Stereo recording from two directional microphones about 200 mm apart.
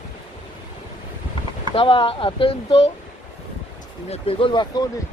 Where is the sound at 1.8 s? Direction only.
25° left (ahead or behind).